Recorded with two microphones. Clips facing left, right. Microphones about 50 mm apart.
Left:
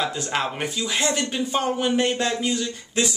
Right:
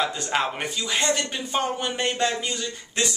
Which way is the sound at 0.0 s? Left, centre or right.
Centre.